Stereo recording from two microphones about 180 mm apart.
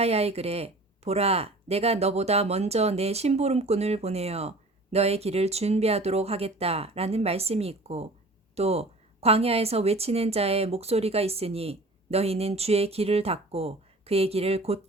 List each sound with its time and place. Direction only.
0.0 s speech: 35° right (ahead or behind)